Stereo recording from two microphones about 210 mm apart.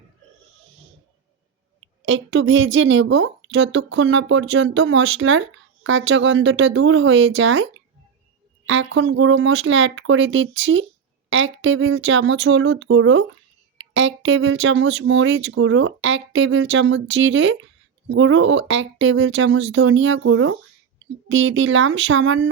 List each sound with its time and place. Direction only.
2.0 s a woman's voice: 70° right (ahead or behind)